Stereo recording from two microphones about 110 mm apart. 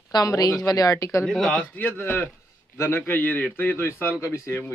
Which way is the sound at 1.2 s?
5° left (ahead or behind).